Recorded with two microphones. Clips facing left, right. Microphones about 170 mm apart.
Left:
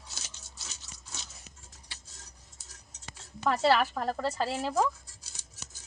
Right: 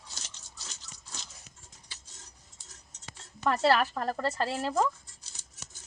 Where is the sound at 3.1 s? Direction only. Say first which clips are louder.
Even; centre (ahead or behind).